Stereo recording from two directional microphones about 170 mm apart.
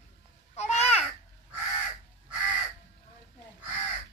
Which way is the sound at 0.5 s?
40° left (ahead or behind).